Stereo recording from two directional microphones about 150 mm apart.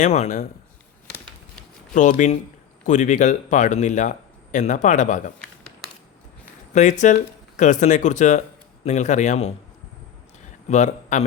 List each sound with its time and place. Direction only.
0.0 s a man's voice: 50° left (ahead or behind)
1.9 s a man's voice: 55° left (ahead or behind)
6.7 s a man's voice: 55° left (ahead or behind)
10.7 s speech: 50° left (ahead or behind)